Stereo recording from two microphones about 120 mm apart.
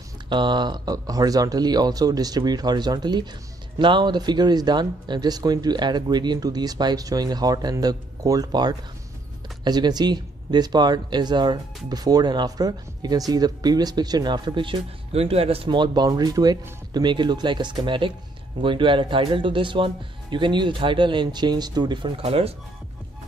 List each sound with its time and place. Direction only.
0.3 s speech: 40° right (ahead or behind)
22.2 s speech: 55° right (ahead or behind)